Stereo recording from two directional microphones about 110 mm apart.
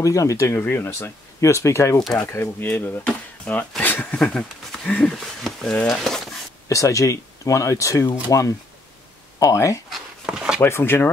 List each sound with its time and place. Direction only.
0.0 s speech: 30° left (ahead or behind); by 6.2 s centre (ahead or behind)
6.7 s speech: 30° left (ahead or behind)
10.2 s a sound: 5° right (ahead or behind)
10.6 s speech: 20° left (ahead or behind)